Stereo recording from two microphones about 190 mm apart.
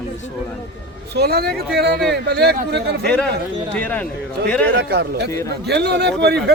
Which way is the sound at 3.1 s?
5° left (ahead or behind).